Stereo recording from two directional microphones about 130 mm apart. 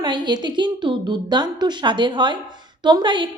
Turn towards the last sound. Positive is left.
turn(degrees=-40)  # may be behind; listen again after turning